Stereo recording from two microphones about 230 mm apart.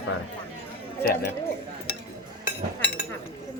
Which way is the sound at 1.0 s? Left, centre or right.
Left.